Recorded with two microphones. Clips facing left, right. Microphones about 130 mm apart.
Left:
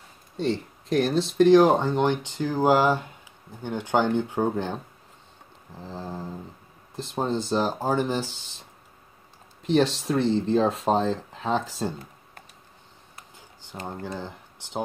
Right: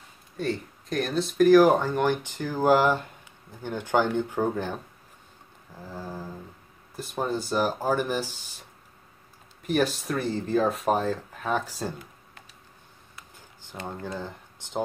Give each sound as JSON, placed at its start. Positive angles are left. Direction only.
{"t": 0.4, "sound": "speech", "side_deg": 30}
{"t": 5.8, "sound": "speech", "side_deg": 20}
{"t": 9.7, "sound": "speech", "side_deg": 25}
{"t": 13.8, "sound": "speech", "side_deg": 15}